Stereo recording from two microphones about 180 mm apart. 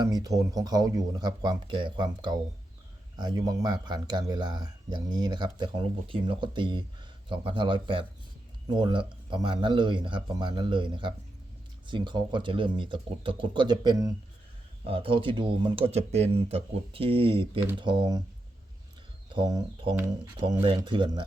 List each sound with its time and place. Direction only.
0.0 s speech: 20° right (ahead or behind)
19.3 s speech: 20° right (ahead or behind)